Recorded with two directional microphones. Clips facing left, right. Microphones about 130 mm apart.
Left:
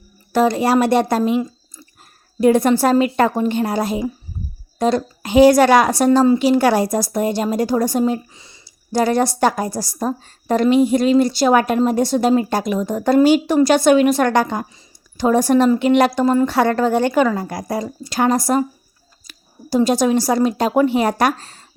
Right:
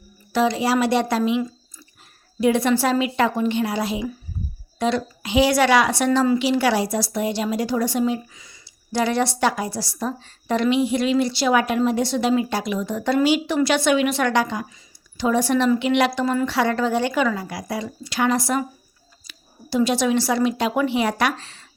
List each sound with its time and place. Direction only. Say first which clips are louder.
0.3 s a woman's voice: left 4 dB; 50° left (ahead or behind)
2.4 s a woman's voice: left 5 dB; 45° left (ahead or behind)
6.1 s a woman's voice: left 7 dB; 30° left (ahead or behind)
6.4 s a woman's voice: left 5 dB; 45° left (ahead or behind)
8.3 s speech: left 2 dB; 30° left (ahead or behind)
8.6 s a woman's voice: left 5 dB; 40° left (ahead or behind)